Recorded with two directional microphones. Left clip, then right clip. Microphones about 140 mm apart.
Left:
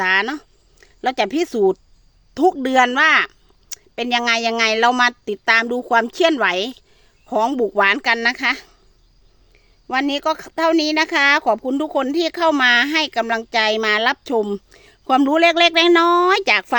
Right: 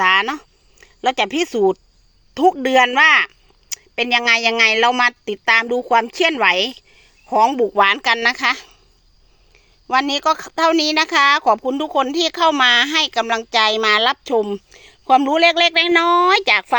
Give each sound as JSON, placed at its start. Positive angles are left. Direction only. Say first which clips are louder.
{"t": 0.0, "sound": "a woman's voice", "louder": "right 3 dB", "side_deg": 25}
{"t": 9.8, "sound": "a woman's voice", "louder": "right 3 dB", "side_deg": 25}